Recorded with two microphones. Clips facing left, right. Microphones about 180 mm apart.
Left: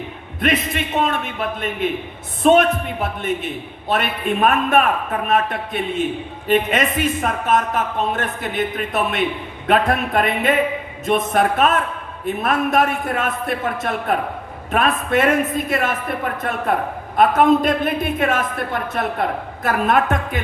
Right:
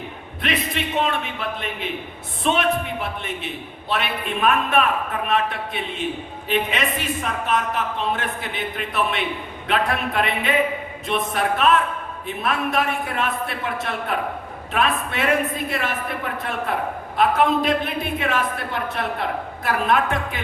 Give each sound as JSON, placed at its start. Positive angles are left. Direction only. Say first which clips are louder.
{"t": 0.4, "sound": "speech", "louder": "left 5 dB", "side_deg": 50}